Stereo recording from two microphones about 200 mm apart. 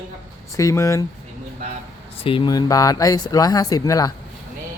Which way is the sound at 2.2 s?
25° left (ahead or behind).